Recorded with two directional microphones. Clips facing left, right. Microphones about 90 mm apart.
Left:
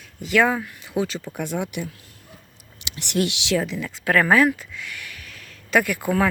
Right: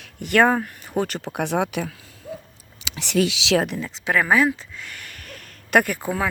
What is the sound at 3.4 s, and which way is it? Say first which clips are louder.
Speech: right 3 dB; 80° right.